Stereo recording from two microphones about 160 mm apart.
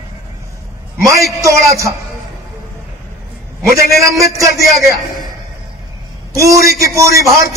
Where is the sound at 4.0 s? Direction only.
20° right (ahead or behind).